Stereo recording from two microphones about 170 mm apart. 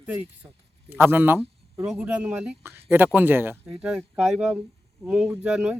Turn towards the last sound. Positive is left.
turn(degrees=-5)  # may be behind; listen again after turning